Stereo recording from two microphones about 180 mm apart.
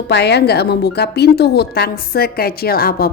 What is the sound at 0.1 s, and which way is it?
A woman's voice, 65° left (ahead or behind).